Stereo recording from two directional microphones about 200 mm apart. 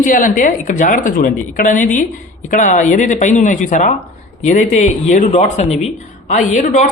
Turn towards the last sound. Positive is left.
turn(degrees=40)  # may be behind; listen again after turning